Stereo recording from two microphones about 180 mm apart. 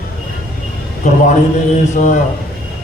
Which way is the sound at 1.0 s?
40° left (ahead or behind).